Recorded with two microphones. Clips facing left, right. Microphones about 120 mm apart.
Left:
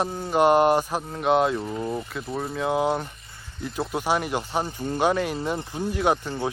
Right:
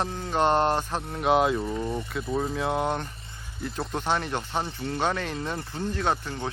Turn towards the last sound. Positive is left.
turn(degrees=15)  # may be behind; listen again after turning